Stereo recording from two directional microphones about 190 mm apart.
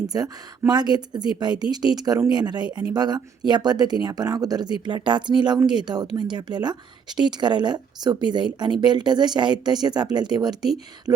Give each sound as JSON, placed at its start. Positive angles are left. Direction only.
{"t": 0.1, "sound": "a woman's voice", "side_deg": -20}